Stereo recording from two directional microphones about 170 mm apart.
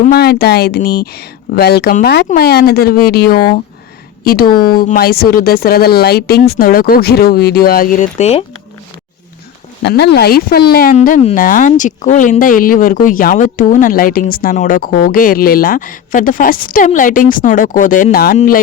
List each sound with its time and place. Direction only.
0.1 s speech: 70° left (ahead or behind); by 8.4 s 40° left (ahead or behind)
9.8 s speech: 80° left
10.9 s speech: 50° left (ahead or behind)